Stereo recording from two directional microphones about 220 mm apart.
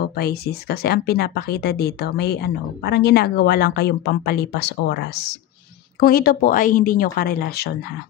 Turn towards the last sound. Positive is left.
turn(degrees=45)  # may be behind; listen again after turning